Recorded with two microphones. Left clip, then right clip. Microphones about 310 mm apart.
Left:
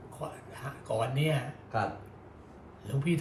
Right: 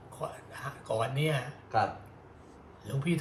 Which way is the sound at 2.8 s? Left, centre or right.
Centre.